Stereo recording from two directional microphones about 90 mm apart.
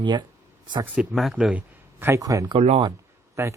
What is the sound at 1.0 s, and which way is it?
Speech, 5° right (ahead or behind).